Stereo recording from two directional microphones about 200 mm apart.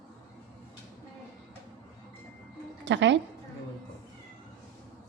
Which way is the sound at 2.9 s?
65° right (ahead or behind).